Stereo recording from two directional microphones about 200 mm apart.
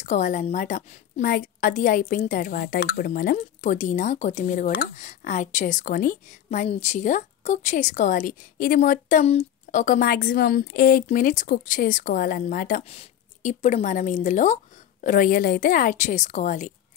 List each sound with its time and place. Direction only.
0.0 s a woman's voice: 40° left (ahead or behind)
12.8 s a woman's voice: 30° left (ahead or behind)